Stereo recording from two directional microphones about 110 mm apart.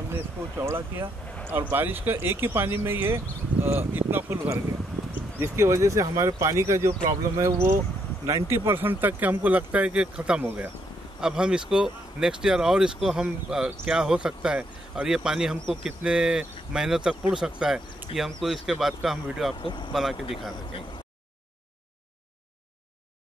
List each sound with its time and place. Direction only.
0.1 s speech: 20° right (ahead or behind); by 19.5 s centre (ahead or behind)
19.6 s speech: 45° left (ahead or behind)
19.9 s speech: centre (ahead or behind)